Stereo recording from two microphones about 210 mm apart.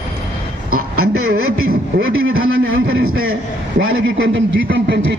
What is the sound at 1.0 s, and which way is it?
Speech, 90° right.